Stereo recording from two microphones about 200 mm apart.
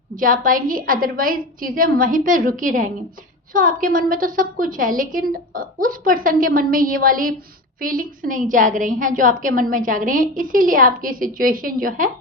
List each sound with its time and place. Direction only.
0.2 s a woman's voice: 45° right (ahead or behind)